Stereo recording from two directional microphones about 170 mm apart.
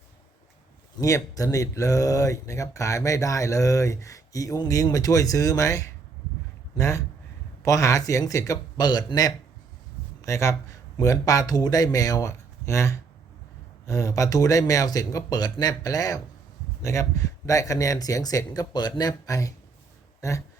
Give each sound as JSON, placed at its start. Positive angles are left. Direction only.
{"t": 0.9, "sound": "speech", "side_deg": 20}